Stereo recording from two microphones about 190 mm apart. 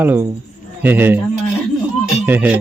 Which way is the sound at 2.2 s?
10° right (ahead or behind).